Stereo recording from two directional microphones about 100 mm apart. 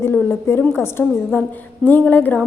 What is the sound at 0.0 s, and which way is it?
A woman's voice, 25° left (ahead or behind).